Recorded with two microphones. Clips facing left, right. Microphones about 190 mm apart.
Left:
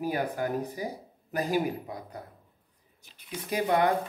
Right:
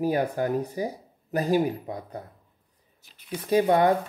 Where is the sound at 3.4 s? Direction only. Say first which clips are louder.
Right 5 dB; 30° right (ahead or behind).